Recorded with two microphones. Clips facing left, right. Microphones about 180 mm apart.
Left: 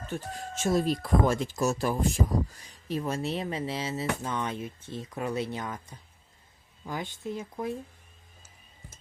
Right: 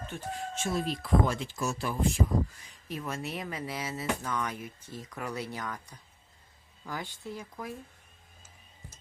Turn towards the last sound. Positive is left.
turn(degrees=25)  # may be behind; listen again after turning